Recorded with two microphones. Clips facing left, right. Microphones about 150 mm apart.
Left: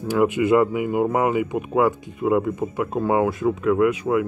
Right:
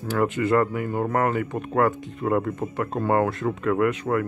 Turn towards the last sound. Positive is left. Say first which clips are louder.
# left 3 dB
turn(degrees=5)  # may be behind; listen again after turning